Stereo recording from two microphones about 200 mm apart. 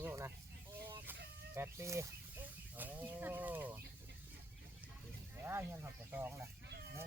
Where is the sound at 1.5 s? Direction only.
10° right (ahead or behind).